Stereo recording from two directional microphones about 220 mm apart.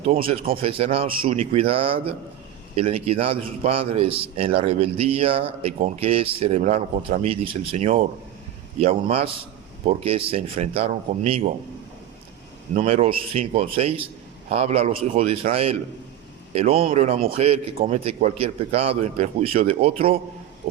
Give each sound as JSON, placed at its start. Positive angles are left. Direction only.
{"t": 0.0, "sound": "a man's voice", "side_deg": -25}
{"t": 12.7, "sound": "a man's voice", "side_deg": -30}